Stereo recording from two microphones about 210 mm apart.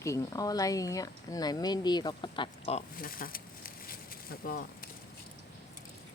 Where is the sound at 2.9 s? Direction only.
45° left (ahead or behind).